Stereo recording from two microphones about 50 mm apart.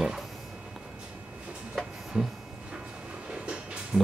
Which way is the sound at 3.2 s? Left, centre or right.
Right.